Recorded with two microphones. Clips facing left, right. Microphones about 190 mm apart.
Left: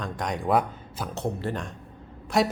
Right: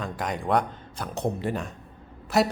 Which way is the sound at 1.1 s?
15° right (ahead or behind).